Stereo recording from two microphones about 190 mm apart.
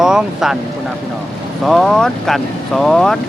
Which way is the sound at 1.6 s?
Centre (ahead or behind).